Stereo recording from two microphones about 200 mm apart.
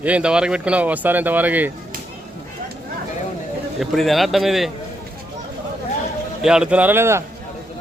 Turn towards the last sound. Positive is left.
turn(degrees=-15)  # may be behind; listen again after turning